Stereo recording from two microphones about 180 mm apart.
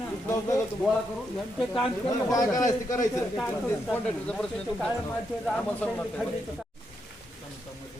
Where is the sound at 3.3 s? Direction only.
5° left (ahead or behind).